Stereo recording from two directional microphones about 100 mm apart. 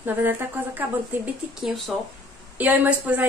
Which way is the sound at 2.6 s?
15° right (ahead or behind).